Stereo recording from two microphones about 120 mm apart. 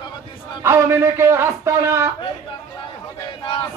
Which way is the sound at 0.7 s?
20° right (ahead or behind).